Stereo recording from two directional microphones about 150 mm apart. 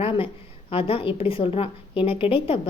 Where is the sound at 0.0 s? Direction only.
35° left (ahead or behind).